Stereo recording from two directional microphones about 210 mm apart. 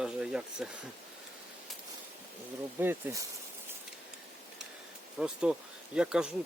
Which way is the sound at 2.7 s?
10° right (ahead or behind).